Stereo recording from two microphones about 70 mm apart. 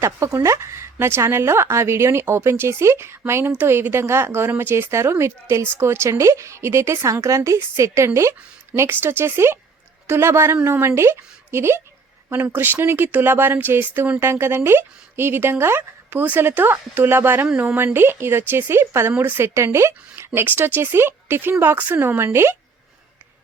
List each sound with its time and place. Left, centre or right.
0.0 s a woman's voice: right
20.4 s a woman's voice: right